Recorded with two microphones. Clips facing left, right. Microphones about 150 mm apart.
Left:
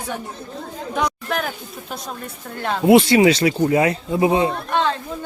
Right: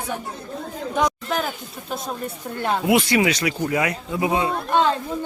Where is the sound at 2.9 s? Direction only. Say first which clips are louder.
Left 8 dB; 30° left (ahead or behind).